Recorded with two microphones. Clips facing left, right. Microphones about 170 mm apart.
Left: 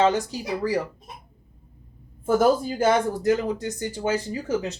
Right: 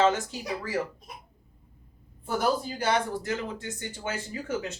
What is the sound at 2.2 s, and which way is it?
Speech, 45° left (ahead or behind).